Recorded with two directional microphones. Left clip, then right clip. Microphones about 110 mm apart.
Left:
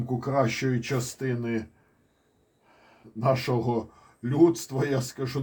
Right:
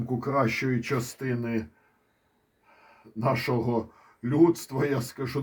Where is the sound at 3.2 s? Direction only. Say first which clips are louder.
Left 1 dB; 45° right (ahead or behind).